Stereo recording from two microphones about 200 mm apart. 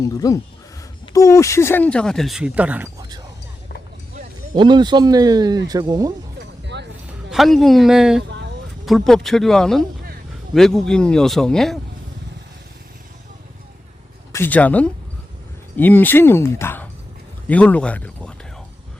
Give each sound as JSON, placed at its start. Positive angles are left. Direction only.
{"t": 0.0, "sound": "speech", "side_deg": 15}
{"t": 4.5, "sound": "speech", "side_deg": -20}
{"t": 6.4, "sound": "vehicle", "side_deg": -60}
{"t": 7.3, "sound": "speech", "side_deg": 0}
{"t": 8.3, "sound": "vehicle", "side_deg": -65}
{"t": 8.9, "sound": "speech", "side_deg": 0}
{"t": 14.3, "sound": "speech", "side_deg": 10}